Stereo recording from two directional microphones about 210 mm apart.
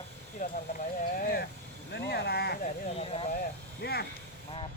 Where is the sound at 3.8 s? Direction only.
50° left (ahead or behind).